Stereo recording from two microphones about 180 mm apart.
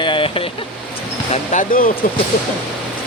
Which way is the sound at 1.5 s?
45° left (ahead or behind).